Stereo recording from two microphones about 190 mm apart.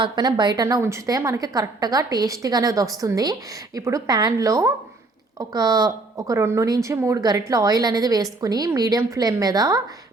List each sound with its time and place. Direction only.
0.0 s a woman's voice: 20° right (ahead or behind)